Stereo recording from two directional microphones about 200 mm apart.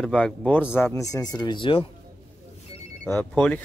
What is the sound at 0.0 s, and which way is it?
Speech, 5° left (ahead or behind).